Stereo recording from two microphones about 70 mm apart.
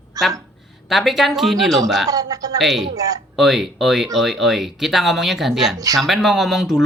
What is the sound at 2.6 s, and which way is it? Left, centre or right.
Speech, centre.